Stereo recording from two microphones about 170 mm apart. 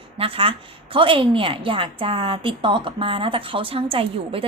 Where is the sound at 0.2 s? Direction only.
30° right (ahead or behind).